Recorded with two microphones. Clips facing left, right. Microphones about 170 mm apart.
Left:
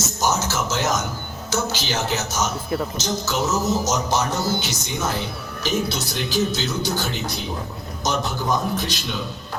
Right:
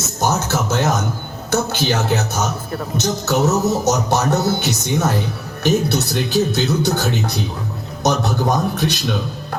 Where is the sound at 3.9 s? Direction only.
65° right (ahead or behind).